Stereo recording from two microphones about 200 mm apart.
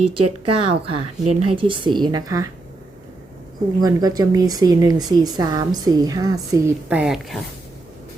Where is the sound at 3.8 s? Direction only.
20° right (ahead or behind); by 7.5 s centre (ahead or behind).